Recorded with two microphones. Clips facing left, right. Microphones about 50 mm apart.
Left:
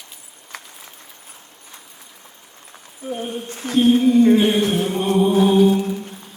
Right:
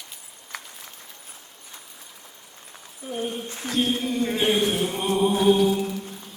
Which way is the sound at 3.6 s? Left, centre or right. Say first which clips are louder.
Left 10 dB; left.